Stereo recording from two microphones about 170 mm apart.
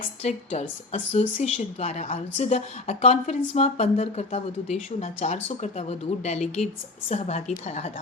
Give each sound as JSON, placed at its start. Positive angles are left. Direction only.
{"t": 0.0, "sound": "a woman's voice", "side_deg": 40}